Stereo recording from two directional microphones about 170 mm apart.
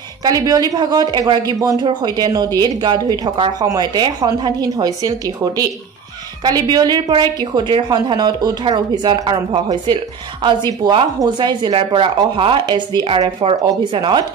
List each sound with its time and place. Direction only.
0.2 s a woman's voice: 20° right (ahead or behind)